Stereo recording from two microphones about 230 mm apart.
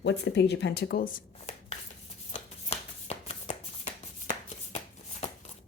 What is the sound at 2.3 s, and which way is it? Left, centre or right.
Shuffling cards, left.